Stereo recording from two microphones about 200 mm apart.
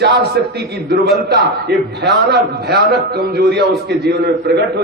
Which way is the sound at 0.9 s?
55° right (ahead or behind).